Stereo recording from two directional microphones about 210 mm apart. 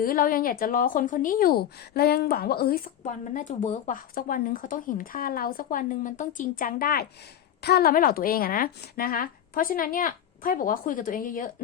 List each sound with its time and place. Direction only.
0.0 s a woman's voice: 45° left (ahead or behind)